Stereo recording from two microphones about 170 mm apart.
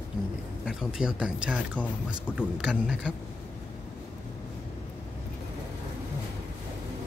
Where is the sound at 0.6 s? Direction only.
5° right (ahead or behind).